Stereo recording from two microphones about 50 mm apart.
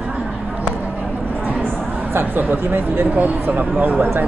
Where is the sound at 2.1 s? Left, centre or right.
Right.